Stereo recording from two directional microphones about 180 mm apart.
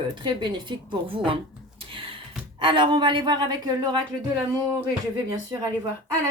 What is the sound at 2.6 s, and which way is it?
Speech, 30° right (ahead or behind).